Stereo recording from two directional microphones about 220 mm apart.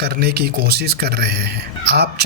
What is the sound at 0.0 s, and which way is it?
Speech, 45° right (ahead or behind).